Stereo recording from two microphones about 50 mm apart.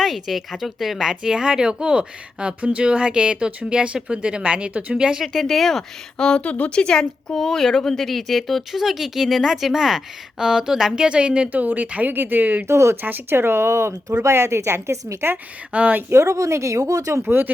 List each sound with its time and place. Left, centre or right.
0.0 s a woman's voice: centre; by 4.9 s right
4.9 s a woman's voice: centre
5.2 s speech: centre
6.1 s a woman's voice: centre
6.4 s a woman's voice: left; by 11.4 s centre
11.4 s speech: right
12.6 s speech: right
13.0 s speech: right
15.7 s speech: right
16.0 s speech: right
17.2 s speech: right